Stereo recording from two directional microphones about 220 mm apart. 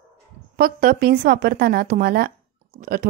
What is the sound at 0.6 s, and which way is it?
A woman's voice, 40° right (ahead or behind).